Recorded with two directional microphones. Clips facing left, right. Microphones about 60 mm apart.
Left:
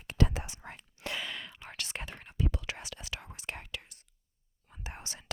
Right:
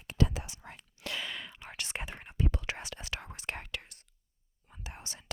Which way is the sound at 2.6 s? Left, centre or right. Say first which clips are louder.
Right 2 dB; right.